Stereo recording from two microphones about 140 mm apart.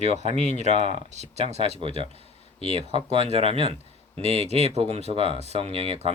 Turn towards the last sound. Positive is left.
turn(degrees=-45)  # may be behind; listen again after turning